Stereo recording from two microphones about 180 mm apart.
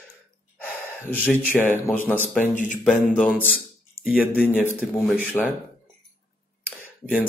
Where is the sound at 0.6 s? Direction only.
10° left (ahead or behind).